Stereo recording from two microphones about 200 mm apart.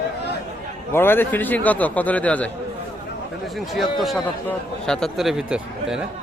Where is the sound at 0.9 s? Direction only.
10° left (ahead or behind).